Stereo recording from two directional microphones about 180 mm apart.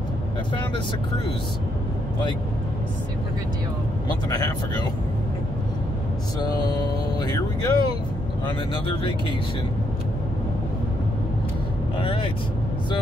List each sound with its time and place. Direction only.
4.3 s speech: 20° left (ahead or behind)
6.4 s speech: 25° left (ahead or behind)
12.0 s speech: 30° left (ahead or behind)